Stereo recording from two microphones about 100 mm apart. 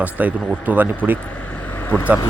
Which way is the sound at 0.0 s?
15° right (ahead or behind).